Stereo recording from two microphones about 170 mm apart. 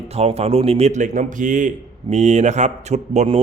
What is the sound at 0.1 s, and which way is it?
A man's voice, 35° right (ahead or behind).